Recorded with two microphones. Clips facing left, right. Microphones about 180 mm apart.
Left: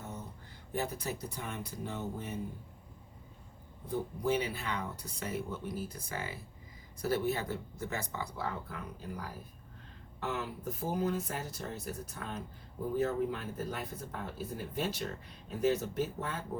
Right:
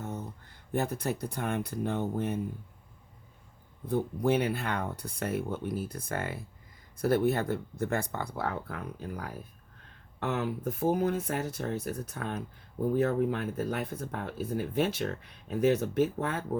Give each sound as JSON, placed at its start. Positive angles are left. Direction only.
{"t": 0.7, "sound": "speech", "side_deg": -55}
{"t": 3.8, "sound": "speech", "side_deg": -60}